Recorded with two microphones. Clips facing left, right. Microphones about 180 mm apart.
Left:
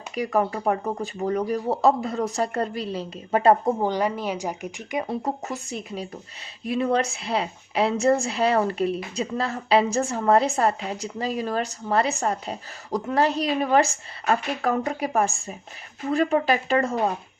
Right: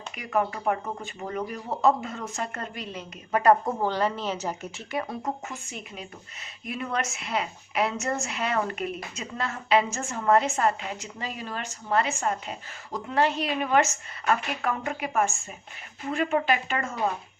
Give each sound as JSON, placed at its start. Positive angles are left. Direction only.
{"t": 0.2, "sound": "a woman's voice", "side_deg": 35}
{"t": 5.0, "sound": "a woman's voice", "side_deg": 35}